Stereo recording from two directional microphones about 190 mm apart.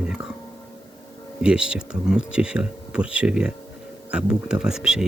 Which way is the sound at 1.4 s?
5° right (ahead or behind).